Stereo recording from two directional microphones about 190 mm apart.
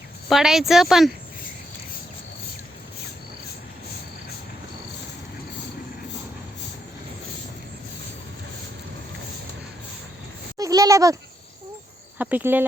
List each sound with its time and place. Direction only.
0.3 s speech: centre (ahead or behind)
10.6 s a sound: 20° right (ahead or behind)
12.2 s speech: 10° right (ahead or behind)